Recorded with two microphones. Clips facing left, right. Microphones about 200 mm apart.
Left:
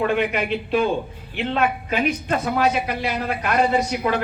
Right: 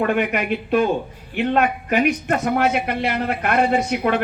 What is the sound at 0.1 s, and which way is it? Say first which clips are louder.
A man's voice: right 1 dB; 50° right (ahead or behind).